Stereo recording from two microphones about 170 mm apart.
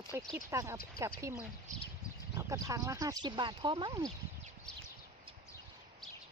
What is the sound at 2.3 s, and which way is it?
Speech, 20° right (ahead or behind).